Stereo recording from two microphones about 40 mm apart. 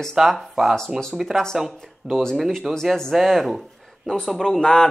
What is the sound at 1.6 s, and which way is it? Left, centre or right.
Speech, centre.